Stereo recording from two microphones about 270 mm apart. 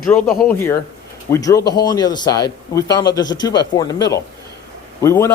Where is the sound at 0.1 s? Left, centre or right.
Centre.